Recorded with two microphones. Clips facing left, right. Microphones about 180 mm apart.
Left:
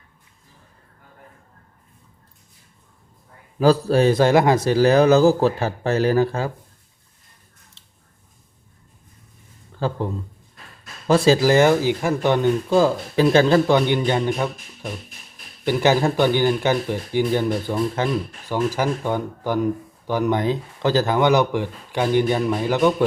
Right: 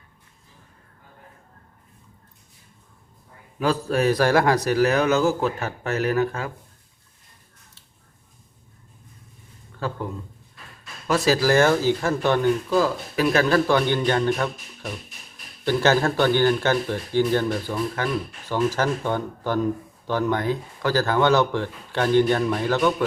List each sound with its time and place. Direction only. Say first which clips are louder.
3.6 s speech: left 6 dB; 35° left (ahead or behind)
9.8 s speech: left 5 dB; 30° left (ahead or behind)
11.0 s speech: left 5 dB; 30° left (ahead or behind)
11.3 s speech: left 3 dB; 20° left (ahead or behind)
12.7 s speech: left 4 dB; 25° left (ahead or behind)